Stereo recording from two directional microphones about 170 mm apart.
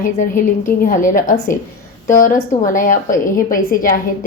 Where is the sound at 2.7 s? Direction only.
50° left (ahead or behind).